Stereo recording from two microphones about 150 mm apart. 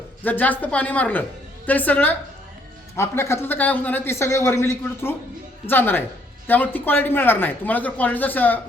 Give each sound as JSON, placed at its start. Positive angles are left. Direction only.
{"t": 0.3, "sound": "speech", "side_deg": 10}